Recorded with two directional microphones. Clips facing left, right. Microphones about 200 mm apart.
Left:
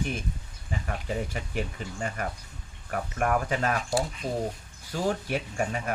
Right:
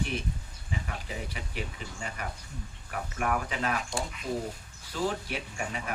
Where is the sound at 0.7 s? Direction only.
45° left (ahead or behind).